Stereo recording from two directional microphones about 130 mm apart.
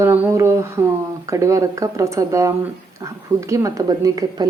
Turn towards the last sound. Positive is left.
turn(degrees=-30)  # may be behind; listen again after turning